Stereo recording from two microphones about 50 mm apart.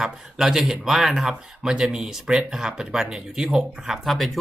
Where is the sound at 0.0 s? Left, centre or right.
Centre.